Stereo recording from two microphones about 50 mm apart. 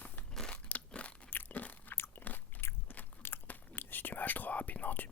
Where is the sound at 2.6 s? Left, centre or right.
Left.